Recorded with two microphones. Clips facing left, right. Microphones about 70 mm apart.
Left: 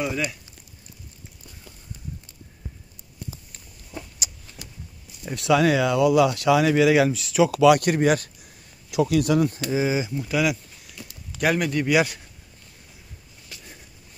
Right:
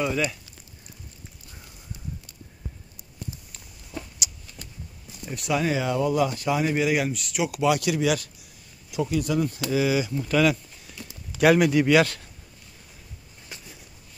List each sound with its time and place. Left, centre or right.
0.0 s speech: centre
4.6 s clip-clop: centre
5.3 s speech: left
7.6 s speech: left
8.9 s speech: left
9.7 s speech: left
10.1 s speech: centre
11.3 s speech: centre
11.9 s speech: centre
13.5 s a sound: right